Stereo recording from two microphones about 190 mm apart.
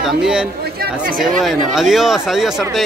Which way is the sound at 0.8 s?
50° right (ahead or behind).